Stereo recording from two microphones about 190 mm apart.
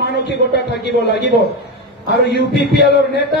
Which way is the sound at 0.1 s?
65° left (ahead or behind).